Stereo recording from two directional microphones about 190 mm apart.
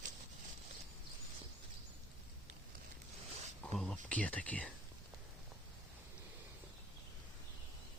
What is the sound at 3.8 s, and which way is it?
Speech, 5° left (ahead or behind).